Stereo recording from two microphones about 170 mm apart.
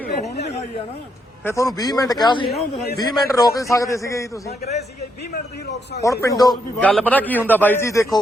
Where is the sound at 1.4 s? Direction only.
20° left (ahead or behind).